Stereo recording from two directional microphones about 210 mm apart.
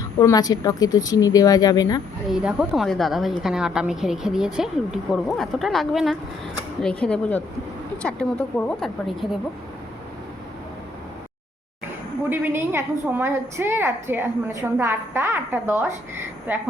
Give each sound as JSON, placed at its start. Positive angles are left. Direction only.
{"t": 0.2, "sound": "speech", "side_deg": 15}
{"t": 2.3, "sound": "a woman's voice", "side_deg": -5}
{"t": 12.3, "sound": "a woman's voice", "side_deg": -10}